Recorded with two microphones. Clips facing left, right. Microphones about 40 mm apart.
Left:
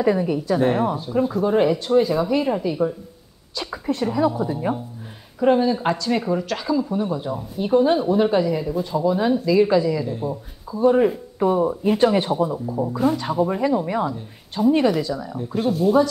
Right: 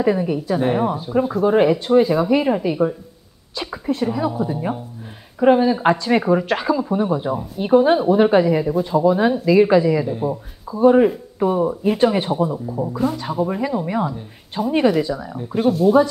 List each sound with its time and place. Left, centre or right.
0.0 s speech: centre
11.1 s speech: centre